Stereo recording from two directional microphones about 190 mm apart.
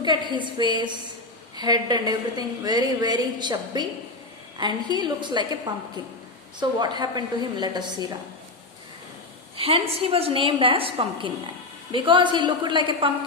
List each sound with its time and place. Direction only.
0.0 s a woman's voice: 25° right (ahead or behind)
6.6 s a woman's voice: 25° right (ahead or behind)
9.6 s a woman's voice: 30° right (ahead or behind)